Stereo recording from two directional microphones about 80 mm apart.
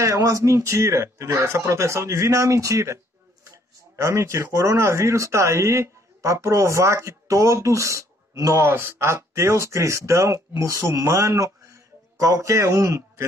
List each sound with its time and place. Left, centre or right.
0.0 s speech: right